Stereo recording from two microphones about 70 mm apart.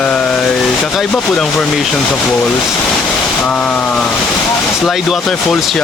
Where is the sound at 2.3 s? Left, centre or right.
Centre.